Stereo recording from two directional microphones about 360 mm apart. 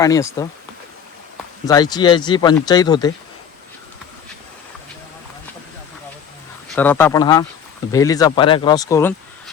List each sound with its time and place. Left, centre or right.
0.0 s speech: centre
1.6 s speech: centre
6.7 s speech: centre